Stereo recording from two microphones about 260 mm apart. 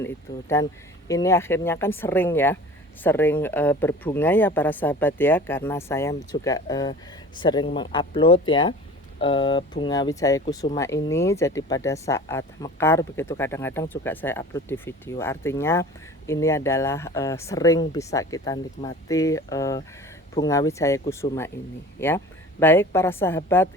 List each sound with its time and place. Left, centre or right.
0.0 s speech: centre
22.6 s speech: centre